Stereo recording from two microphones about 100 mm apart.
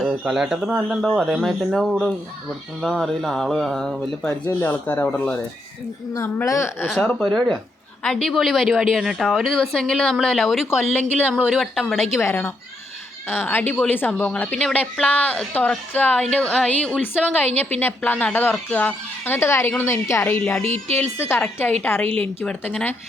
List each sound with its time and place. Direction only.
0.0 s a woman's voice: 5° right (ahead or behind)
4.3 s a woman's voice: 20° left (ahead or behind)
6.4 s a woman's voice: 35° left (ahead or behind)
7.0 s a woman's voice: 10° left (ahead or behind)
10.9 s a woman's voice: 10° right (ahead or behind)
12.2 s a woman's voice: 25° left (ahead or behind)
20.4 s a woman's voice: 10° left (ahead or behind)
20.7 s speech: 90° right
20.9 s a woman's voice: 20° left (ahead or behind)